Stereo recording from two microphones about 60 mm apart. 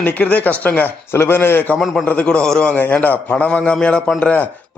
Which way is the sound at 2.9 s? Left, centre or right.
Left.